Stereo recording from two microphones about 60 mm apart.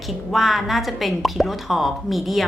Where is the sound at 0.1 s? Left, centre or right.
Centre.